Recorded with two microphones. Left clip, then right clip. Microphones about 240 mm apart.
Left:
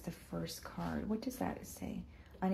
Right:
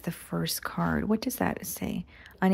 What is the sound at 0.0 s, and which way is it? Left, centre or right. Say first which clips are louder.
Speech: right 11 dB; right.